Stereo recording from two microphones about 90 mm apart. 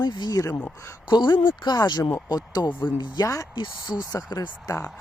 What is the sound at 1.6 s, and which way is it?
Speech, 50° left (ahead or behind).